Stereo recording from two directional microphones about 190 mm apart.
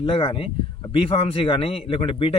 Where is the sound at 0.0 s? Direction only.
30° left (ahead or behind).